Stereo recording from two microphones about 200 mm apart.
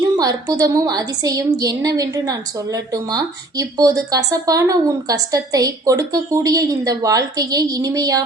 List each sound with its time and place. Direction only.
0.2 s speech: 15° right (ahead or behind)